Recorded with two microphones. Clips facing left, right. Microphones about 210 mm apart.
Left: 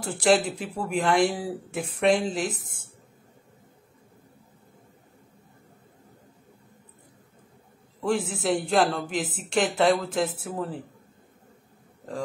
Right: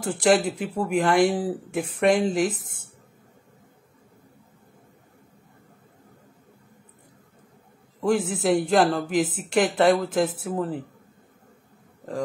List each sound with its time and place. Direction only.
0.3 s speech: 5° right (ahead or behind)
8.1 s speech: 5° right (ahead or behind)